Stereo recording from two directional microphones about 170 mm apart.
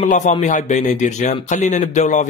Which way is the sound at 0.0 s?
45° left (ahead or behind).